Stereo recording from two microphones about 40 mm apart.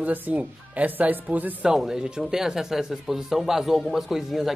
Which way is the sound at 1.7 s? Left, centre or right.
Centre.